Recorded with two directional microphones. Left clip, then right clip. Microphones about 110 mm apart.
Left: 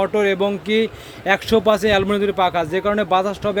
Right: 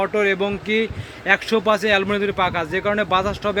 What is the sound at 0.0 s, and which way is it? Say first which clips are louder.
A man's voice: left 2 dB; 30° left (ahead or behind).